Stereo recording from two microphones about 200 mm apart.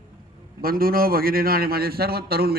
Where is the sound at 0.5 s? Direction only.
45° right (ahead or behind).